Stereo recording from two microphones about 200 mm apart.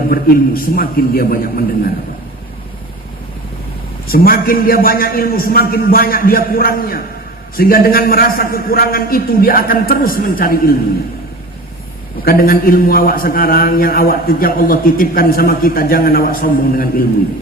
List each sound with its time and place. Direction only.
0.1 s a man's voice: 45° left (ahead or behind)
4.0 s a man's voice: 50° left (ahead or behind)
12.2 s a man's voice: 50° left (ahead or behind)